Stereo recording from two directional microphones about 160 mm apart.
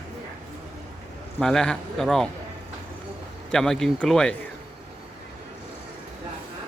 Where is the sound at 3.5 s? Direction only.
Centre (ahead or behind).